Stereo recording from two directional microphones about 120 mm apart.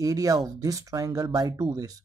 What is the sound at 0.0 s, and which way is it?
Speech, 30° right (ahead or behind).